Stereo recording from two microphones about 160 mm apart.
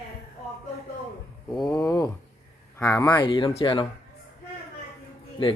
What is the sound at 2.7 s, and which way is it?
Speech, 20° left (ahead or behind).